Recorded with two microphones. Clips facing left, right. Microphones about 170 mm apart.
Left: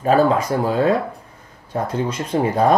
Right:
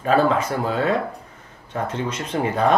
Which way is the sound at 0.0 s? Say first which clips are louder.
Left 3 dB; 35° left (ahead or behind).